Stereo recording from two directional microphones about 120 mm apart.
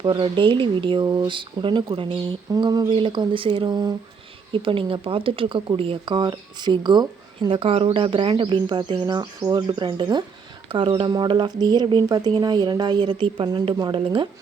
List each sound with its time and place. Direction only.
0.0 s speech: 40° right (ahead or behind)
4.5 s speech: 45° right (ahead or behind)